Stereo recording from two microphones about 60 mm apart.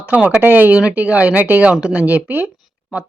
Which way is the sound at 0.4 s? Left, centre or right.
Right.